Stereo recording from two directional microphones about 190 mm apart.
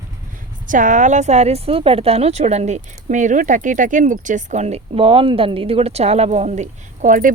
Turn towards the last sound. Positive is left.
turn(degrees=-45)  # may be behind; listen again after turning